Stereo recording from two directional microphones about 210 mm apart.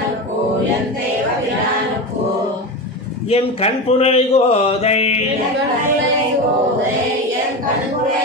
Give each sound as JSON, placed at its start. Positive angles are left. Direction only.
{"t": 3.3, "sound": "speech", "side_deg": 30}